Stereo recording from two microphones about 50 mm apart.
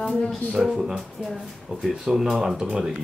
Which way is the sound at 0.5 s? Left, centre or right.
Centre.